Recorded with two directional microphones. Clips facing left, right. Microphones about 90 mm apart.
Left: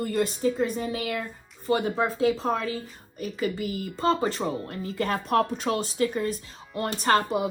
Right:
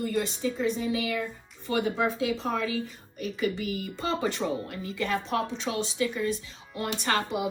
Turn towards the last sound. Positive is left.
turn(degrees=40)  # may be behind; listen again after turning